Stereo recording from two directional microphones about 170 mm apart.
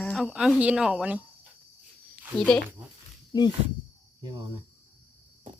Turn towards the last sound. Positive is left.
turn(degrees=-25)  # may be behind; listen again after turning